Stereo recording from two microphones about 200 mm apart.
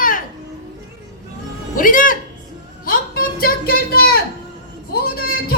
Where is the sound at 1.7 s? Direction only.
45° left (ahead or behind).